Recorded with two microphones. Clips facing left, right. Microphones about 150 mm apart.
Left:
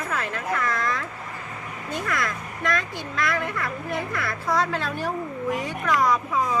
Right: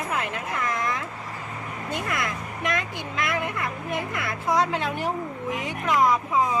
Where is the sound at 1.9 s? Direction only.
20° right (ahead or behind).